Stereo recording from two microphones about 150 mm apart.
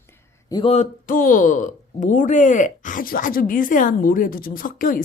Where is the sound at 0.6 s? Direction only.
50° left (ahead or behind).